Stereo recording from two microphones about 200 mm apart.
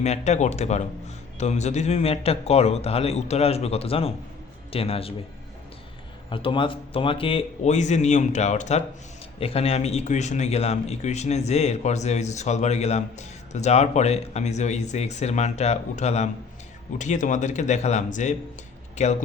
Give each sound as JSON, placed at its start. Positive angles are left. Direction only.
{"t": 0.0, "sound": "a man's voice", "side_deg": 35}
{"t": 6.3, "sound": "speech", "side_deg": 25}